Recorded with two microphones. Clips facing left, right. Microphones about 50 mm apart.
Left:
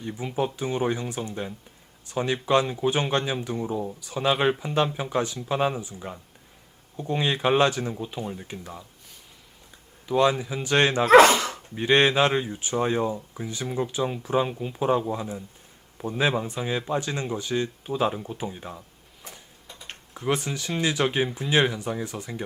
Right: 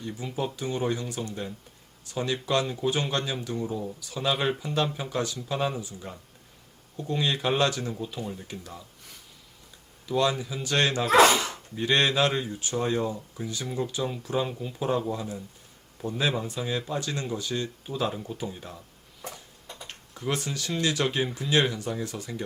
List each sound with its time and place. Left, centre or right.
0.0 s a man's voice: left
10.1 s a man's voice: left
11.0 s speech: left
11.7 s a man's voice: left
19.9 s a man's voice: left